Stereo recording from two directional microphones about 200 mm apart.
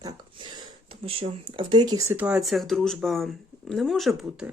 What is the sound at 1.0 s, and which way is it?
Speech, 25° right (ahead or behind).